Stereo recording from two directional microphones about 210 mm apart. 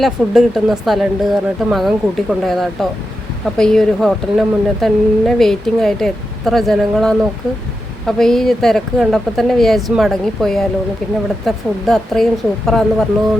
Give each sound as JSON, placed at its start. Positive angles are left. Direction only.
{"t": 0.0, "sound": "speech", "side_deg": 0}